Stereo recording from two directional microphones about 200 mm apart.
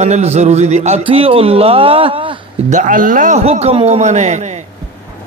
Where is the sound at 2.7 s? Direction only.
40° right (ahead or behind).